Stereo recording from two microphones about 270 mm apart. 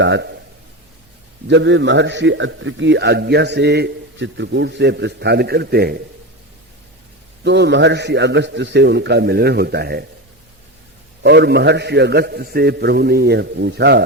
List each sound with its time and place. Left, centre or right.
0.0 s a man's voice: right
1.5 s a man's voice: right
7.4 s a man's voice: right
11.2 s a man's voice: right